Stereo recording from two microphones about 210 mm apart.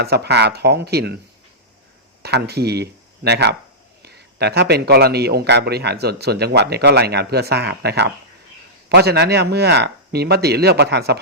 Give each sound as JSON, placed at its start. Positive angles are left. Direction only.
{"t": 0.0, "sound": "a man's voice", "side_deg": -50}
{"t": 2.2, "sound": "a man's voice", "side_deg": -50}